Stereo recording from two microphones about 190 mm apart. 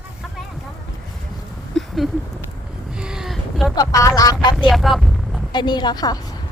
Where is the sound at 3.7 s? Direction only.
15° left (ahead or behind).